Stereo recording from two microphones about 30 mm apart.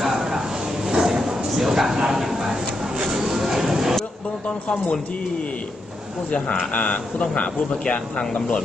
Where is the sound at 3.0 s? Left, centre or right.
Centre.